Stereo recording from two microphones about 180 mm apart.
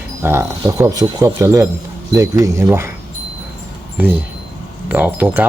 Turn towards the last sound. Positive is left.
turn(degrees=-10)  # may be behind; listen again after turning